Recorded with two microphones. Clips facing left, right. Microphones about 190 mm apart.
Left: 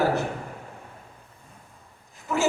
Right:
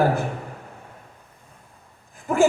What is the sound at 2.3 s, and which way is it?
Speech, 50° right (ahead or behind).